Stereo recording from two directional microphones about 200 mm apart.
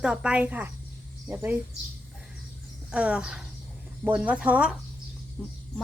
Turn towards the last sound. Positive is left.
turn(degrees=5)  # may be behind; listen again after turning